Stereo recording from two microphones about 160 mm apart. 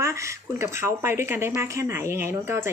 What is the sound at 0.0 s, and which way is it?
A woman's voice, 20° right (ahead or behind).